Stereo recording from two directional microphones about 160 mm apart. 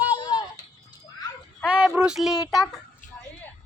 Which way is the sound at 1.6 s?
5° right (ahead or behind).